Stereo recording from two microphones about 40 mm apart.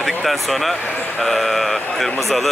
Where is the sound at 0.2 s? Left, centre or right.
Centre.